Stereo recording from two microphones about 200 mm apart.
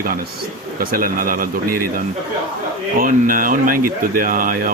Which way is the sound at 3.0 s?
45° right (ahead or behind).